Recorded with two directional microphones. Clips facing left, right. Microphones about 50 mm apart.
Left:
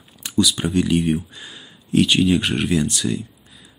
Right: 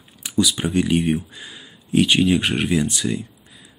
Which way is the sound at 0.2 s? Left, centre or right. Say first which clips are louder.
Left 1 dB; centre.